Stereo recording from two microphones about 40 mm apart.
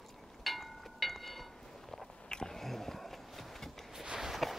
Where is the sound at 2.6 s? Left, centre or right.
Centre.